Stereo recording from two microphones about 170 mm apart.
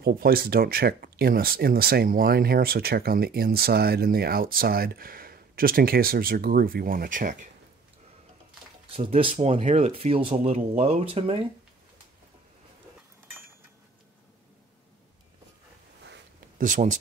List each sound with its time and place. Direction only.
0.0 s speech: 60° right (ahead or behind)
8.9 s speech: 35° right (ahead or behind)
16.5 s speech: 50° right (ahead or behind)